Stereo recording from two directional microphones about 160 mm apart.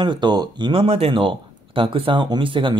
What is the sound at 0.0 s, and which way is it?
Speech, 30° right (ahead or behind).